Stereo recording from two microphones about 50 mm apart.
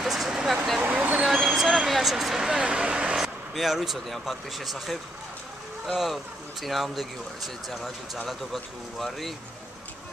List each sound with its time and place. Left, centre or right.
0.0 s vehicle: centre
0.8 s vehicle: right
1.2 s a sound: centre
2.6 s vehicle: centre
3.5 s speech: centre